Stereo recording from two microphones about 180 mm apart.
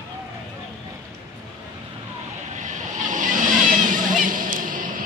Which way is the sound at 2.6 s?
45° right (ahead or behind).